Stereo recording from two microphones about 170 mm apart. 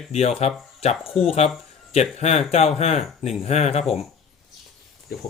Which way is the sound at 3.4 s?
40° left (ahead or behind).